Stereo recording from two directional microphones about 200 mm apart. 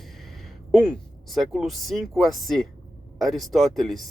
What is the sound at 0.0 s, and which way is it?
Speech, centre (ahead or behind).